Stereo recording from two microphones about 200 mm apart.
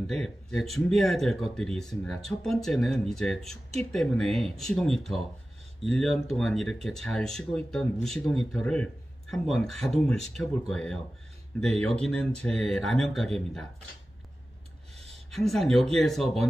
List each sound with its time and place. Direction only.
0.0 s speech: centre (ahead or behind)
15.3 s speech: centre (ahead or behind)